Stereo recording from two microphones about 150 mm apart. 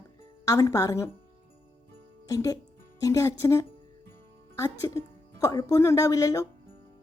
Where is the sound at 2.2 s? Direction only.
20° left (ahead or behind).